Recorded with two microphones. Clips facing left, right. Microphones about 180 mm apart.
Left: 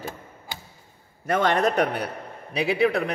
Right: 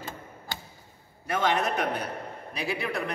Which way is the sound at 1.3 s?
60° left (ahead or behind).